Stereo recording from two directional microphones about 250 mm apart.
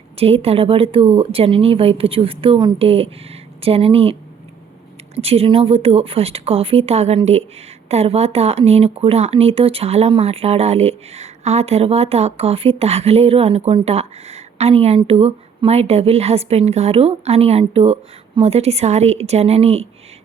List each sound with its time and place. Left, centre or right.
0.2 s speech: right